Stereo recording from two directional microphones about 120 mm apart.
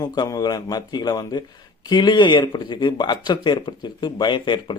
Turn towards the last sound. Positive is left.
turn(degrees=40)  # may be behind; listen again after turning